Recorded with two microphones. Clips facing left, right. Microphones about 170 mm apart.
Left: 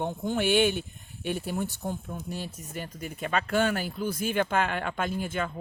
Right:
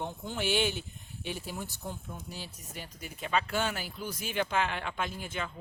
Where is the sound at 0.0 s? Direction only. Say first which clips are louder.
Left 7 dB; 55° left (ahead or behind).